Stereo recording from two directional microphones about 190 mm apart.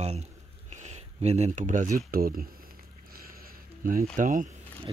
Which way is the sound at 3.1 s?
50° right (ahead or behind).